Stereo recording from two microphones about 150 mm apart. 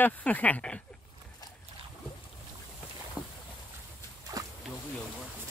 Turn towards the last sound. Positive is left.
turn(degrees=-25)  # may be behind; listen again after turning